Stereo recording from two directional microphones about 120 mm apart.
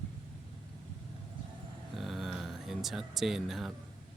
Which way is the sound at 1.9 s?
Centre (ahead or behind).